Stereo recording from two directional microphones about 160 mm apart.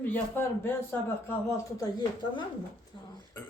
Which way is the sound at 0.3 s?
15° left (ahead or behind).